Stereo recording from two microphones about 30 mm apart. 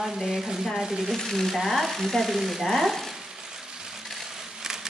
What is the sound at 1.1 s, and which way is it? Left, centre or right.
Speech, centre.